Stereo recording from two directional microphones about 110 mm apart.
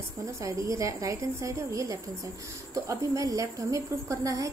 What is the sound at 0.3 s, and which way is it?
A woman's voice, 30° right (ahead or behind).